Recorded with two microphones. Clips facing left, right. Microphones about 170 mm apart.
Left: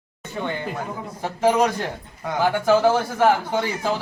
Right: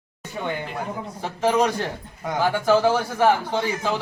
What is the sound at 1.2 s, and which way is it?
Speech, 10° left (ahead or behind).